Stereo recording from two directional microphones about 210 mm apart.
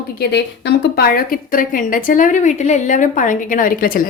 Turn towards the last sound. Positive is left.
turn(degrees=45)  # may be behind; listen again after turning